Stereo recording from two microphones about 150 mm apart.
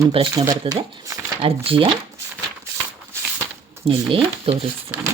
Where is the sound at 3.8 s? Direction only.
40° right (ahead or behind).